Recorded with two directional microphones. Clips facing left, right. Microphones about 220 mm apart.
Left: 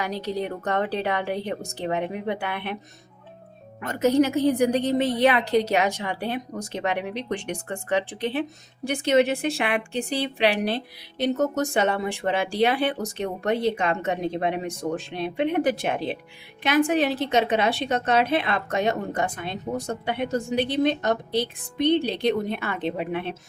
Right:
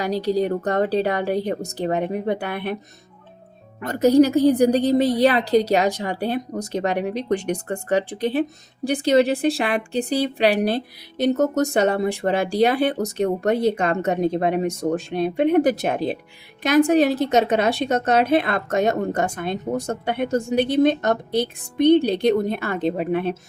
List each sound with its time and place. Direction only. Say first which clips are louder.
0.0 s a woman's voice: right 7 dB; 35° right (ahead or behind)
3.8 s a woman's voice: right 5 dB; 35° right (ahead or behind)